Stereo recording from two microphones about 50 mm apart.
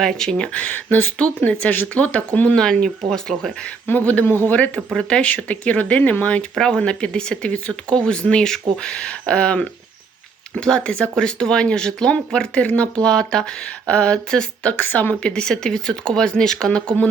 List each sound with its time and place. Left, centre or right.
0.0 s speech: centre
0.6 s speech: left
1.5 s speech: left
2.6 s speech: centre
3.1 s speech: centre
3.9 s speech: left
4.3 s a man's voice: left
4.5 s speech: left
6.6 s speech: centre
14.7 s speech: left
15.2 s speech: centre